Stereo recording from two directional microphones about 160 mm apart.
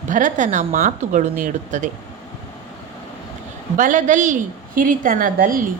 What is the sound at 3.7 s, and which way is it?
A woman's voice, 55° right (ahead or behind).